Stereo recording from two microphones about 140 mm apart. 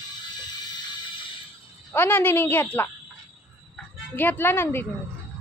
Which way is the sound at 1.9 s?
15° left (ahead or behind).